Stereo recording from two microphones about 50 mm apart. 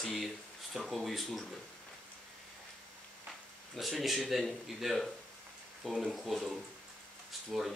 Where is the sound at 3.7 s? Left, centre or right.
Centre.